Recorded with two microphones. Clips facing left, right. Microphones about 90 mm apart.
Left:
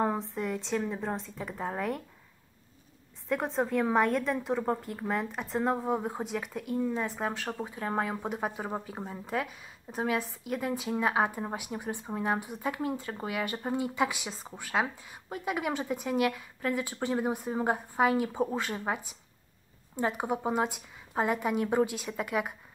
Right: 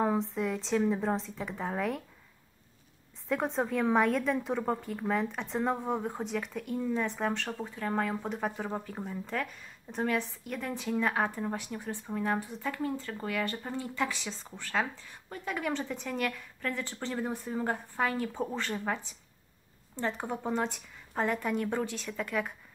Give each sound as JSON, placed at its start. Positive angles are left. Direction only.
{"t": 0.3, "sound": "a woman's voice", "side_deg": 0}
{"t": 3.3, "sound": "a woman's voice", "side_deg": 0}
{"t": 7.5, "sound": "speech", "side_deg": 15}